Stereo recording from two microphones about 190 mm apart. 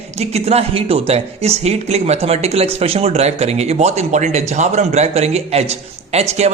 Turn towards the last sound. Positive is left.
turn(degrees=-35)  # may be behind; listen again after turning